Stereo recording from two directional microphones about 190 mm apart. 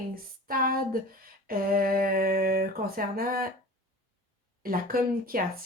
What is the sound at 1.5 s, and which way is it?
Speech, 50° right (ahead or behind).